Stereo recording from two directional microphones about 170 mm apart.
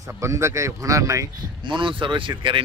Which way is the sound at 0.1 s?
15° right (ahead or behind).